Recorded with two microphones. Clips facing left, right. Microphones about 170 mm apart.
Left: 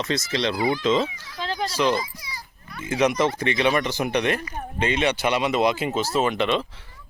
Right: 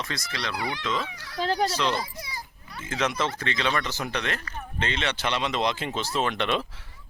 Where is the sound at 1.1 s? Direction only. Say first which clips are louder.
Even; 70° right (ahead or behind).